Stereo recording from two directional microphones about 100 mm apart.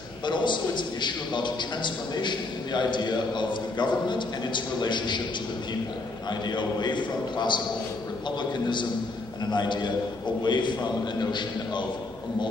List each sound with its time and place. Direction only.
0.3 s a man's voice: 50° left (ahead or behind)
6.5 s a man's voice: 50° left (ahead or behind)